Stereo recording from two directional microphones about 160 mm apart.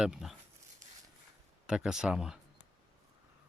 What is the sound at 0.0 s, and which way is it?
Speech, 5° right (ahead or behind).